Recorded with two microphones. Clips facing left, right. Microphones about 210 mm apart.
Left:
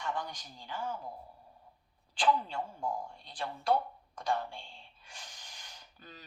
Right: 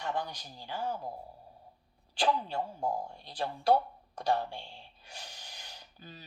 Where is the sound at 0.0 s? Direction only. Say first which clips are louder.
Right 2 dB; 40° right (ahead or behind).